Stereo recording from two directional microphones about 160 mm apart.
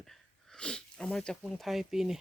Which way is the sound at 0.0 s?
Centre (ahead or behind).